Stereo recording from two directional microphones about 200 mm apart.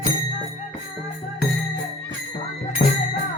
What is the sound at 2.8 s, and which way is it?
Music, 35° left (ahead or behind).